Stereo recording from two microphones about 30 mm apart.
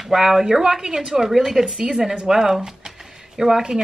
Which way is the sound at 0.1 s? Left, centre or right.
Centre.